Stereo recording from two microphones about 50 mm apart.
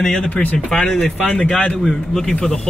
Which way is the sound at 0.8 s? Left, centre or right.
Centre.